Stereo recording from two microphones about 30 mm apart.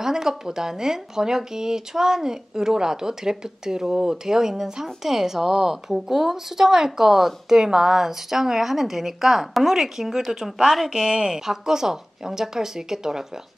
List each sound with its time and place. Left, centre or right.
0.0 s speech: centre
11.1 s speech: centre